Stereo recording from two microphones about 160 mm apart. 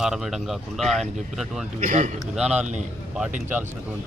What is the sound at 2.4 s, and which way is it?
Speech, 5° right (ahead or behind).